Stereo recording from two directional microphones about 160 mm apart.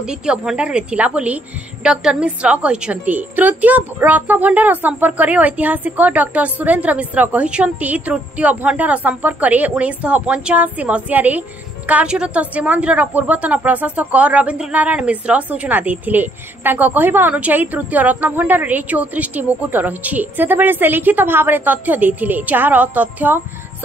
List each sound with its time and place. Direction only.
0.0 s a woman's voice: 5° right (ahead or behind)